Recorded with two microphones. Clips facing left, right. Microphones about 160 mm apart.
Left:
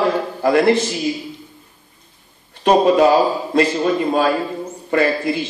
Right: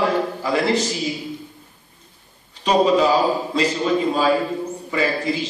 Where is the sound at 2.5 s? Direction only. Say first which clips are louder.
Left 3 dB; 55° left (ahead or behind).